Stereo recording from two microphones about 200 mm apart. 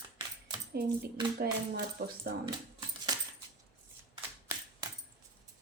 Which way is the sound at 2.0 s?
50° right (ahead or behind).